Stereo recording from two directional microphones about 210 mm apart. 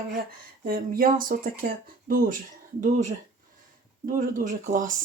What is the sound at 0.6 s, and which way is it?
Speech, 45° right (ahead or behind).